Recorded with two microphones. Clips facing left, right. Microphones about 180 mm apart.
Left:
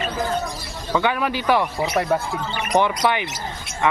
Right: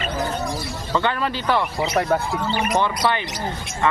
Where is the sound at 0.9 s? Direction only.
10° left (ahead or behind).